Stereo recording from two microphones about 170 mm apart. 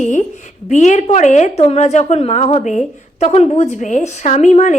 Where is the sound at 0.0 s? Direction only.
45° left (ahead or behind).